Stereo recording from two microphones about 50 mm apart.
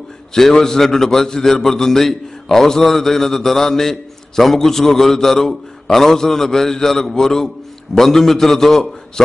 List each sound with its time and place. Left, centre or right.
0.3 s a man's voice: centre